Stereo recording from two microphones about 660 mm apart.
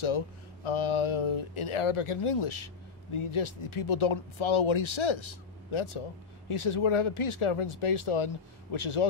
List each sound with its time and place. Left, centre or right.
0.7 s speech: left